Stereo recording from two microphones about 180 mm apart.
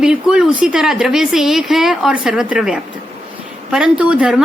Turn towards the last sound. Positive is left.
turn(degrees=-5)  # may be behind; listen again after turning